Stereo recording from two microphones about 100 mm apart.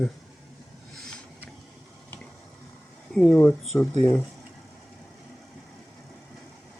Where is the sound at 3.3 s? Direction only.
15° left (ahead or behind).